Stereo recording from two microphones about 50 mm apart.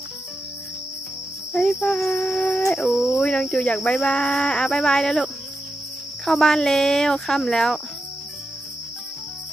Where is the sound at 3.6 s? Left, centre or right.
Left.